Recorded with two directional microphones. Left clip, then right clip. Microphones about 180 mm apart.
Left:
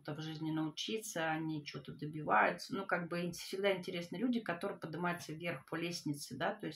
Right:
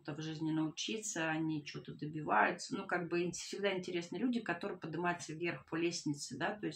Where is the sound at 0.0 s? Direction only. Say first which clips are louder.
Right 2 dB; 25° left (ahead or behind).